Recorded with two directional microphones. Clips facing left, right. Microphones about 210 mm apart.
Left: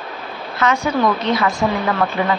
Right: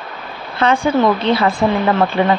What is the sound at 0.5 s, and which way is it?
Speech, 30° right (ahead or behind).